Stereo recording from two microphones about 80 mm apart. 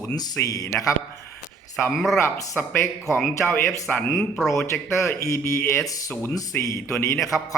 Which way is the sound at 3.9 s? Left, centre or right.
Left.